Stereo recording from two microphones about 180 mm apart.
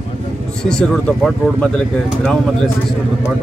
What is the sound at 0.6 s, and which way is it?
Speech, 5° left (ahead or behind).